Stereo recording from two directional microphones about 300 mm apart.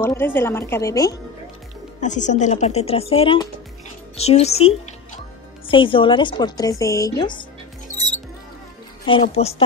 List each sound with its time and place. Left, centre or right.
0.0 s a woman's voice: centre
2.0 s a woman's voice: left
9.0 s a woman's voice: centre